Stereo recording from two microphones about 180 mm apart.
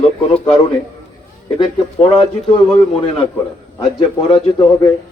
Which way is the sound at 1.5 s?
30° left (ahead or behind).